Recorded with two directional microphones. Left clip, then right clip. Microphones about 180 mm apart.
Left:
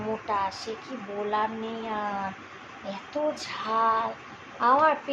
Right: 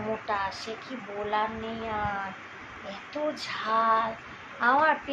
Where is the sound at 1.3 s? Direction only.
15° left (ahead or behind).